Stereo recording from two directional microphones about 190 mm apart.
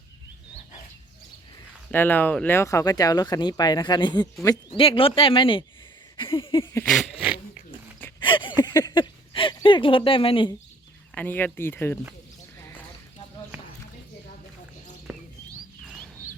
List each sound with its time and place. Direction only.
1.9 s speech: 10° left (ahead or behind); by 6.7 s 25° left (ahead or behind)
6.7 s a sound: 5° left (ahead or behind)
8.2 s speech: 25° left (ahead or behind)
11.1 s speech: 10° left (ahead or behind)